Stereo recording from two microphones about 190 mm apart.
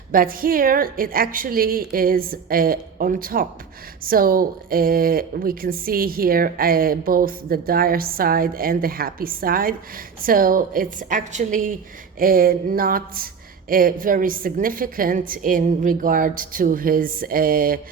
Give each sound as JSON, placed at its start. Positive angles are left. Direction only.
{"t": 0.1, "sound": "a woman's voice", "side_deg": -50}